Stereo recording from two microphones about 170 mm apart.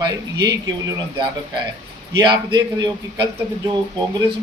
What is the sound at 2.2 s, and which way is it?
Speech, 25° right (ahead or behind).